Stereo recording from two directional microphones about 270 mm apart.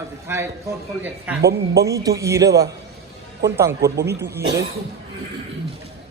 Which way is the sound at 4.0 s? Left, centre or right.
Right.